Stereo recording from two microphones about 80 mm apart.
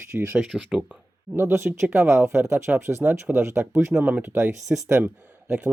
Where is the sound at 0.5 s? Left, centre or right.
Centre.